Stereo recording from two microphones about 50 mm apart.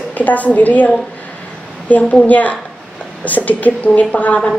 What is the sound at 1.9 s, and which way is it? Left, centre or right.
A woman's voice, left.